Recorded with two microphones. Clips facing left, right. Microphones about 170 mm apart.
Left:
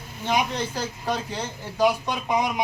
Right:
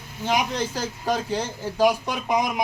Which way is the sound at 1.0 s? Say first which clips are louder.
Right 5 dB; 10° right (ahead or behind).